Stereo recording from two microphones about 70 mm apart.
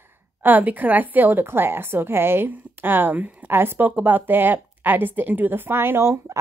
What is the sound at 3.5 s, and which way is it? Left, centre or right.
A woman's voice, right.